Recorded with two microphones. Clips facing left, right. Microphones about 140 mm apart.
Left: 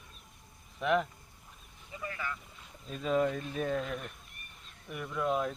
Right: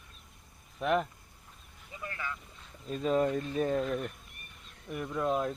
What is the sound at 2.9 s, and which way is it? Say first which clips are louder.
Speech: right 2 dB; 35° right (ahead or behind).